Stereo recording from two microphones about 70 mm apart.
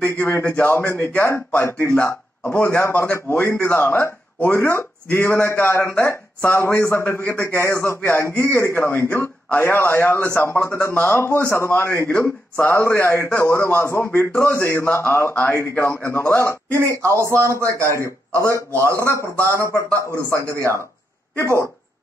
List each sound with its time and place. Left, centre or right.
0.2 s a man's voice: left
3.0 s a man's voice: left
3.5 s a man's voice: left
12.8 s a man's voice: left
16.7 s a man's voice: right